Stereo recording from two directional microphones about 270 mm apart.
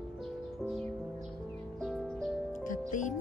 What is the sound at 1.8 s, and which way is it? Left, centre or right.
Music, centre.